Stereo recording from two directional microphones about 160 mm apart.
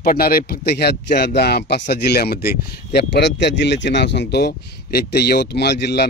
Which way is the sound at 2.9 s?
90° left.